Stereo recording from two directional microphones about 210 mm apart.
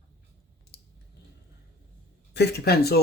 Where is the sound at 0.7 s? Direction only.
50° left (ahead or behind).